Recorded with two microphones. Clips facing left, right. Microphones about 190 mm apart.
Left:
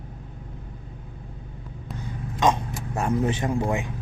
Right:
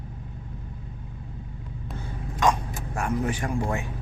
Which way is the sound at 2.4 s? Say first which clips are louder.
Left 2 dB; 20° left (ahead or behind).